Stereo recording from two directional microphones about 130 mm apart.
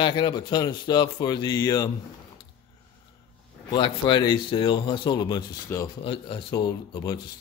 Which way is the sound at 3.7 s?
40° left (ahead or behind).